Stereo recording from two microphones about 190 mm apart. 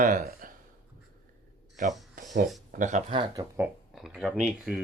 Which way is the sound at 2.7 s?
40° right (ahead or behind).